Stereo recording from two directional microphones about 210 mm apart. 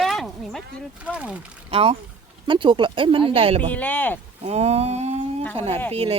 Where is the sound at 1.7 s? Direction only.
25° right (ahead or behind).